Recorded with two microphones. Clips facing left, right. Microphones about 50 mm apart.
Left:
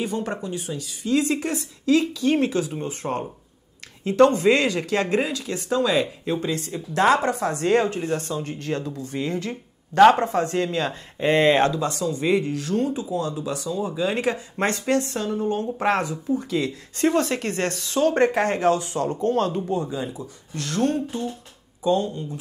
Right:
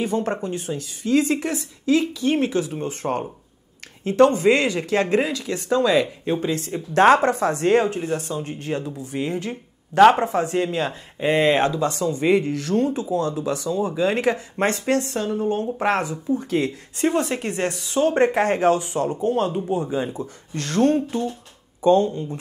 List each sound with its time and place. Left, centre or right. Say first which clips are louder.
0.0 s speech: right 4 dB; right
3.0 s speech: right 3 dB; centre
4.1 s speech: right 1 dB; right
6.7 s speech: right 4 dB; right
7.8 s speech: right 1 dB; right
9.9 s speech: right 1 dB; centre
10.5 s speech: right 1 dB; right
10.9 s speech: even; centre
11.7 s speech: right 2 dB; right
17.0 s speech: even; right
19.0 s speech: left 1 dB; centre
19.9 s speech: right 4 dB; right